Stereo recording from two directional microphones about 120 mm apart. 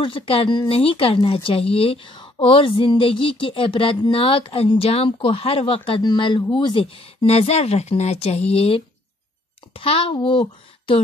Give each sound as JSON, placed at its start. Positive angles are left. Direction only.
{"t": 0.0, "sound": "speech", "side_deg": 45}